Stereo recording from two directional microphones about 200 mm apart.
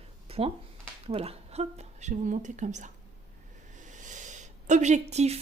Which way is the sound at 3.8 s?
40° right (ahead or behind).